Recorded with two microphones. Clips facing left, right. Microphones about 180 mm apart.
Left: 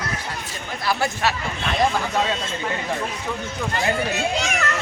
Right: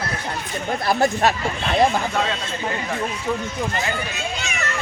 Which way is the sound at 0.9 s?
50° right (ahead or behind).